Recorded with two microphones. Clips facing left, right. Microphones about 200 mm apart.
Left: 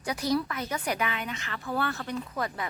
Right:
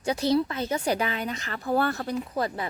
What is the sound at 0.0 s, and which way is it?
A woman's voice, 25° right (ahead or behind).